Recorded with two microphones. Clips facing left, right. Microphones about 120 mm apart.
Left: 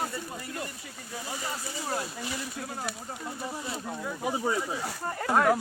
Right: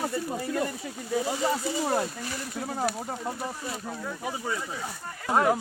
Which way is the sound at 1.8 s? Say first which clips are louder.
Right 5 dB; 80° right.